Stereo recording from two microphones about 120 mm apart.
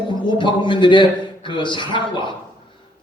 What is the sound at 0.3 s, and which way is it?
A man's voice, 40° left (ahead or behind).